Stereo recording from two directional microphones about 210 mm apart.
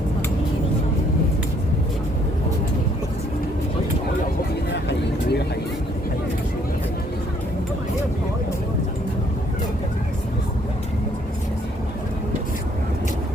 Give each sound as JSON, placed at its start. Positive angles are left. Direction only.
{"t": 4.7, "sound": "vehicle", "side_deg": 55}